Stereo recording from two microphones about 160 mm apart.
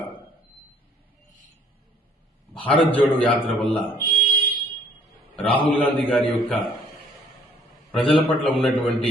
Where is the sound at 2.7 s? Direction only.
30° left (ahead or behind).